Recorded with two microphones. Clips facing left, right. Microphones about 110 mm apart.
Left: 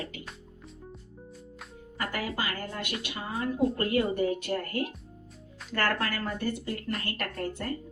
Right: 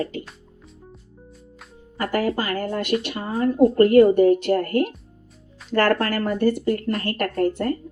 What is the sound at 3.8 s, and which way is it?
Speech, 60° right (ahead or behind).